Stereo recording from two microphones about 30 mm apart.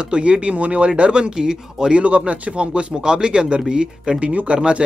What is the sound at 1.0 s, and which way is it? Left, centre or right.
Speech, right.